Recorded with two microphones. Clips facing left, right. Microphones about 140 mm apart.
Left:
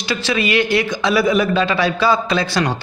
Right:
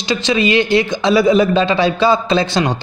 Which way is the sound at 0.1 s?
20° right (ahead or behind).